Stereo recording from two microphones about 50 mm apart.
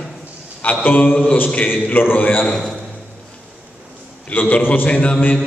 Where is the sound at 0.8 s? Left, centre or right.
Left.